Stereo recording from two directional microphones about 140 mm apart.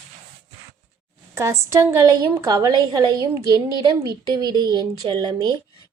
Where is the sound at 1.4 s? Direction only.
20° right (ahead or behind).